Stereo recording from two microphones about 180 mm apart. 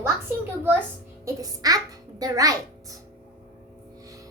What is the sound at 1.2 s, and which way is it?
A child's voice, 20° right (ahead or behind).